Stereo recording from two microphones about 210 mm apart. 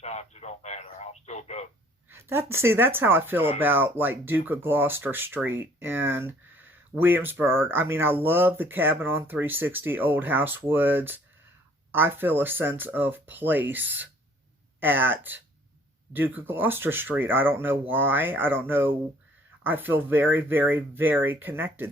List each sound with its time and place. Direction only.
0.0 s radio: 30° left (ahead or behind)
2.0 s speech: 10° right (ahead or behind)